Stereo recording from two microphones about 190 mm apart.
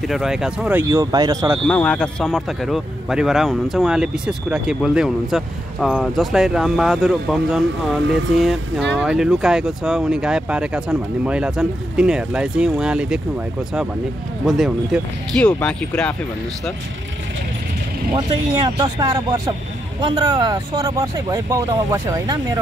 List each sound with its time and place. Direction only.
0.0 s speech: centre (ahead or behind); by 1.6 s 20° right (ahead or behind)
1.7 s speech: 5° left (ahead or behind)
8.1 s speech: 75° right (ahead or behind)
8.4 s speech: centre (ahead or behind)
14.4 s speech: centre (ahead or behind)
18.1 s speech: 20° right (ahead or behind)